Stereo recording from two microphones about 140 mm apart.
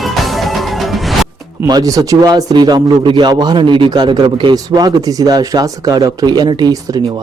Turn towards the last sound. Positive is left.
turn(degrees=-30)  # may be behind; listen again after turning